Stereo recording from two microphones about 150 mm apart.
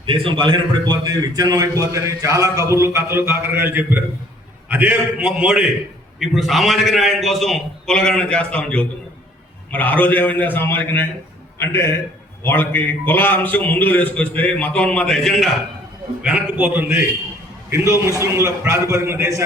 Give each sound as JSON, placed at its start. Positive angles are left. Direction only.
{"t": 0.0, "sound": "a man's voice", "side_deg": -35}
{"t": 16.2, "sound": "a man's voice", "side_deg": -10}
{"t": 18.0, "sound": "a man's voice", "side_deg": -20}